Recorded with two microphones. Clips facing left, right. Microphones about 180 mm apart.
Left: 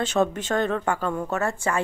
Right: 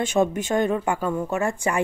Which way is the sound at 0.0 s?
10° right (ahead or behind).